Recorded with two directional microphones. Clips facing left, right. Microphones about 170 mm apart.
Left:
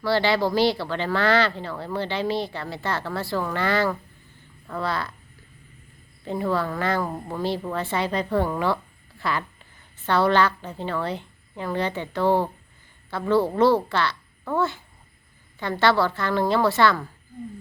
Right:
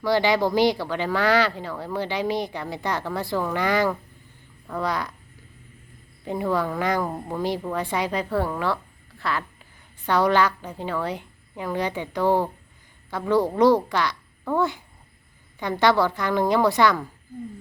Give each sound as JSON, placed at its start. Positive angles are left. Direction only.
{"t": 0.0, "sound": "speech", "side_deg": -15}
{"t": 6.2, "sound": "a woman's voice", "side_deg": -15}
{"t": 10.1, "sound": "a woman's voice", "side_deg": -10}